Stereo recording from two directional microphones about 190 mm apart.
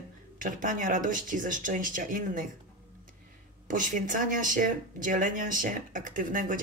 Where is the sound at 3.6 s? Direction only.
45° right (ahead or behind).